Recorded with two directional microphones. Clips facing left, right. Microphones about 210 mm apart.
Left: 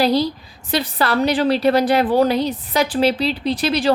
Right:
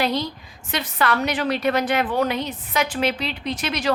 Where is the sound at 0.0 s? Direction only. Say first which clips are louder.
Left 6 dB; 35° left (ahead or behind).